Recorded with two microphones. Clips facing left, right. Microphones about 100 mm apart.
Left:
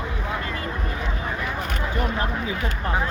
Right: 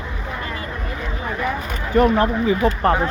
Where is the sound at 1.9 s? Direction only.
65° right (ahead or behind).